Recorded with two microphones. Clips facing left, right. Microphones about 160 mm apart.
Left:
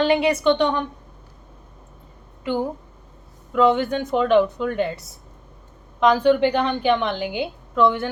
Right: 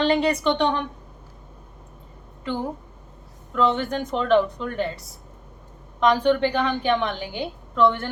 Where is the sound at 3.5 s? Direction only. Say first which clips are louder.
Left 4 dB; 10° left (ahead or behind).